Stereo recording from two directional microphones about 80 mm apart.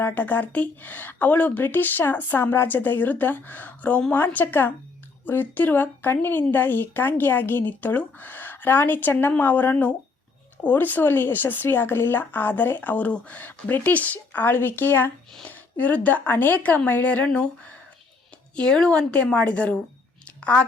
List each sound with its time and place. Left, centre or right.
0.0 s speech: left
18.5 s a woman's voice: centre